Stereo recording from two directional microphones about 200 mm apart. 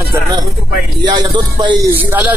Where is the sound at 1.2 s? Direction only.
20° right (ahead or behind).